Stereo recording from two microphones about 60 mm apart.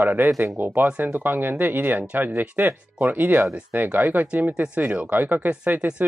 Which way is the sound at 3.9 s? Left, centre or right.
Right.